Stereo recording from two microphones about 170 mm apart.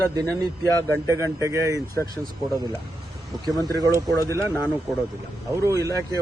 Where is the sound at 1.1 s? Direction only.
20° right (ahead or behind).